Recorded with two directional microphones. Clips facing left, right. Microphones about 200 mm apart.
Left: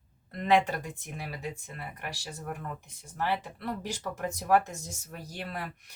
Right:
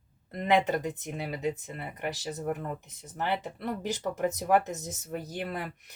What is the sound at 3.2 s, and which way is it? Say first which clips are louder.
Speech: even; 20° right (ahead or behind).